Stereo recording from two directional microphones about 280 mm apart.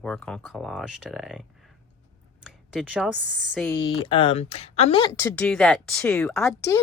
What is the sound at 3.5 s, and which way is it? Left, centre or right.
Speech, centre.